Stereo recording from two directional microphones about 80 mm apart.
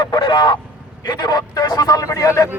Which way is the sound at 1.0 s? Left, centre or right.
Left.